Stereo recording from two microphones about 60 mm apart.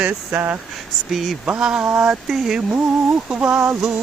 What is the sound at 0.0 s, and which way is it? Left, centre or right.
Speech, right.